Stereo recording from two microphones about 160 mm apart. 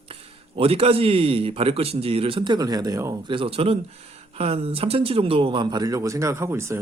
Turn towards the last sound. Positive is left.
turn(degrees=-15)  # may be behind; listen again after turning